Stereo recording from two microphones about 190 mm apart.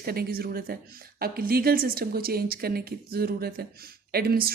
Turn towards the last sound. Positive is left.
turn(degrees=-50)  # may be behind; listen again after turning